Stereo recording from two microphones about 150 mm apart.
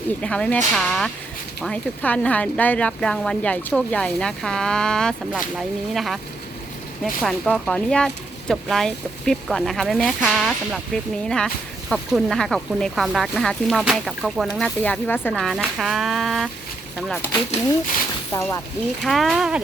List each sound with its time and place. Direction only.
0.2 s speech: 10° left (ahead or behind)
7.2 s speech: 5° left (ahead or behind)
15.4 s speech: centre (ahead or behind)
18.3 s speech: 20° left (ahead or behind)
19.0 s speech: centre (ahead or behind)